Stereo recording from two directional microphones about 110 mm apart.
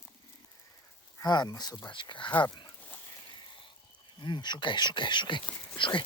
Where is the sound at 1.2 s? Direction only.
40° left (ahead or behind).